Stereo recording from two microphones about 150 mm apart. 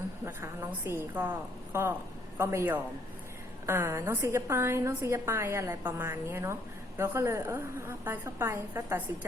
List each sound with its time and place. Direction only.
0.3 s a woman's voice: 20° right (ahead or behind)